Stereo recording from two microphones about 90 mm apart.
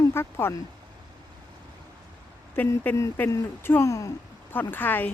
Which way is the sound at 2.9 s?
20° left (ahead or behind).